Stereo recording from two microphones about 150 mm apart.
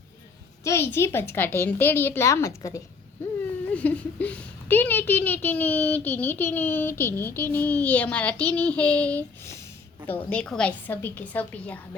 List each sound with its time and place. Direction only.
0.6 s a woman's voice: 20° left (ahead or behind)
3.7 s speech: 10° left (ahead or behind)